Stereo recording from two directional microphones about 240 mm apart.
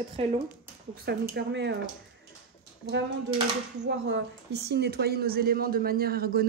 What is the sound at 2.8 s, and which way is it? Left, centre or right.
Speech, right.